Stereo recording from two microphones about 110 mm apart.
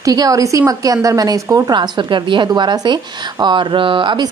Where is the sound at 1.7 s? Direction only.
45° right (ahead or behind).